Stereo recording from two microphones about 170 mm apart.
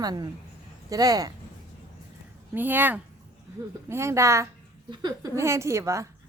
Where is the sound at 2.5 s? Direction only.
10° right (ahead or behind).